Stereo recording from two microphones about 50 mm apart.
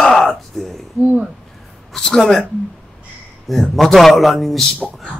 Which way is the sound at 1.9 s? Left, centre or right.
Centre.